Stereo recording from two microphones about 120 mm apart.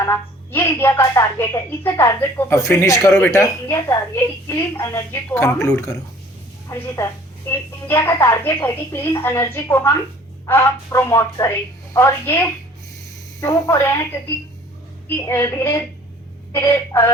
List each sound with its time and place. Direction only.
0.1 s speech: 20° left (ahead or behind)
15.2 s a woman's voice: 25° left (ahead or behind)